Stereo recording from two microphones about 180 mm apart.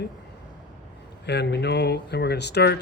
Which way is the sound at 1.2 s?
70° left (ahead or behind).